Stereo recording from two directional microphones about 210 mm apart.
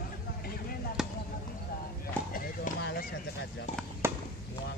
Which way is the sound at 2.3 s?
45° left (ahead or behind).